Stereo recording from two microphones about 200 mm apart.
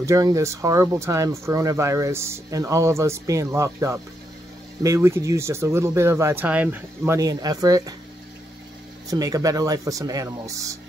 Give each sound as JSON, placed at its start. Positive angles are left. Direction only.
{"t": 0.0, "sound": "speech", "side_deg": -15}
{"t": 9.1, "sound": "speech", "side_deg": -15}